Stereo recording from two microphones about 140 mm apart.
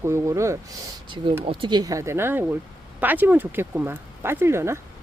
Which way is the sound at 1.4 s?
40° right (ahead or behind).